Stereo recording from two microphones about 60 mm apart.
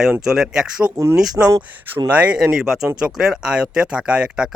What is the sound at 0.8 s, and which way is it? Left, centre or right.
Speech, right.